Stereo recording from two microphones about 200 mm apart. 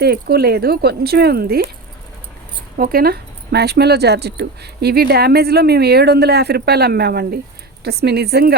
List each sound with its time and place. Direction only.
0.0 s speech: 55° right (ahead or behind)
2.7 s speech: 45° right (ahead or behind)